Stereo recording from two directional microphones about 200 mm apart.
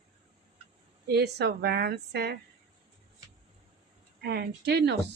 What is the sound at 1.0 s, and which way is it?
Speech, 55° right (ahead or behind).